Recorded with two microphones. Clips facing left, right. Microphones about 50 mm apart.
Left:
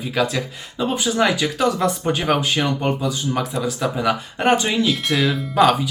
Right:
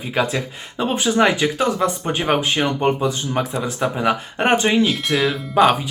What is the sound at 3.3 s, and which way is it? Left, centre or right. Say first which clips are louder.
Speech: even; right.